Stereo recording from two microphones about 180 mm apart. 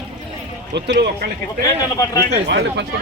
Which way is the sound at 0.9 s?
65° right (ahead or behind).